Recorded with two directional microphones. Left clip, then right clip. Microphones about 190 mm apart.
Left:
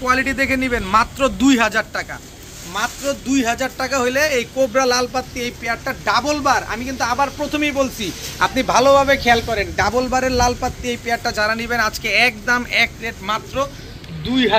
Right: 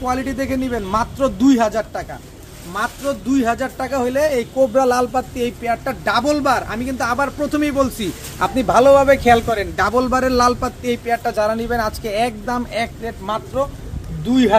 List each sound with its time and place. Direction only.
0.1 s a man's voice: 20° right (ahead or behind)
2.7 s speech: 40° right (ahead or behind)